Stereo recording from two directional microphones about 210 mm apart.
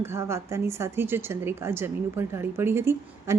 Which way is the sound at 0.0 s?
10° right (ahead or behind).